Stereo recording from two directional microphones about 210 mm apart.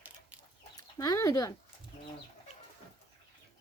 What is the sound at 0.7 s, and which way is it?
Speech, 15° left (ahead or behind).